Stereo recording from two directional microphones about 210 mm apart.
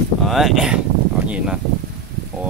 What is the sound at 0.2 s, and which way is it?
Speech, centre (ahead or behind).